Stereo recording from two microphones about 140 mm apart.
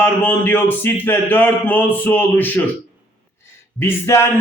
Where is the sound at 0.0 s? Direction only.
15° left (ahead or behind).